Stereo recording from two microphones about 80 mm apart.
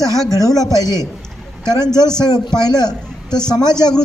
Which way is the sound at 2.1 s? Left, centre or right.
Left.